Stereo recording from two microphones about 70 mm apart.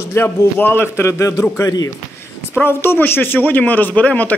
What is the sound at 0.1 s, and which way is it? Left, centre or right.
Speech, left.